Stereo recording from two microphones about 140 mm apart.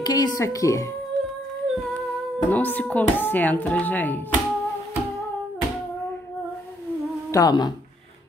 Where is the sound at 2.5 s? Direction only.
10° left (ahead or behind).